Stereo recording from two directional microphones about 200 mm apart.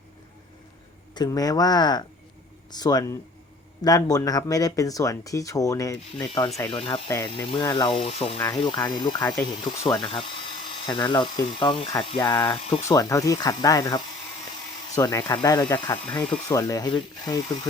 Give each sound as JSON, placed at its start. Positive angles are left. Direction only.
{"t": 1.1, "sound": "speech", "side_deg": 20}
{"t": 8.4, "sound": "speech", "side_deg": 20}